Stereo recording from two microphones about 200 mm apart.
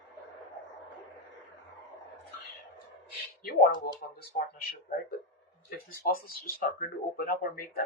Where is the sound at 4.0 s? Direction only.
50° left (ahead or behind).